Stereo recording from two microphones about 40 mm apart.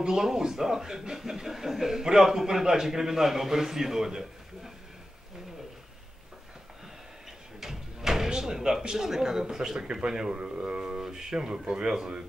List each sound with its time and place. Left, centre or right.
0.0 s speech: centre
7.6 s a sound: centre
8.3 s door: centre
8.8 s speech: centre